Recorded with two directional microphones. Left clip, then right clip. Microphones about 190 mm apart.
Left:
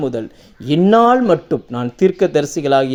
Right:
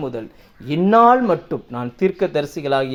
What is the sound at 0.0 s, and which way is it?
Speech, 40° left (ahead or behind).